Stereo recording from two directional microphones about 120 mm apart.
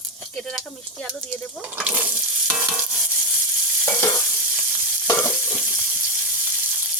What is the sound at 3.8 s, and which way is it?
Stir, 20° left (ahead or behind).